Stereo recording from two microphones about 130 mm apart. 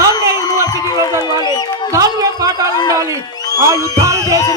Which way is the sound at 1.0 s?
35° left (ahead or behind).